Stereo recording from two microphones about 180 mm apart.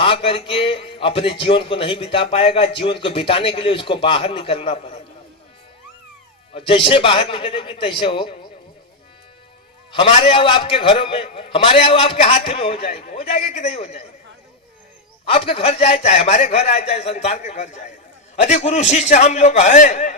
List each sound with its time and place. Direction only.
0.0 s a man's voice: 30° left (ahead or behind)
6.5 s a man's voice: 30° left (ahead or behind)
9.9 s a man's voice: 30° left (ahead or behind)
15.2 s a man's voice: 30° left (ahead or behind)